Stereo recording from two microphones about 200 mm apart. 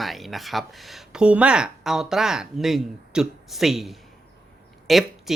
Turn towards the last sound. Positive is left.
turn(degrees=0)  # may be behind; listen again after turning